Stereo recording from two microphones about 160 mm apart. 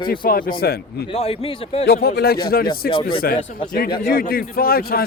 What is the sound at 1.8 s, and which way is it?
Speech, 80° left.